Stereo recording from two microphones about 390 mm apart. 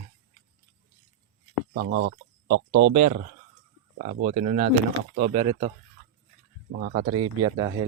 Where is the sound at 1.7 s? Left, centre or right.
Right.